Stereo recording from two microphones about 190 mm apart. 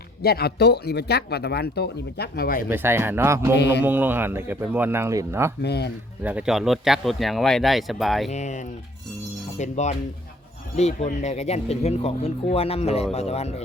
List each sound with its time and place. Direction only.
0.2 s speech: 55° left (ahead or behind)
2.6 s speech: 10° right (ahead or behind)
3.6 s speech: 60° left (ahead or behind)
3.8 s speech: 10° right (ahead or behind)
5.6 s speech: 60° left (ahead or behind)
6.2 s speech: 5° right (ahead or behind)
8.3 s speech: 40° left (ahead or behind)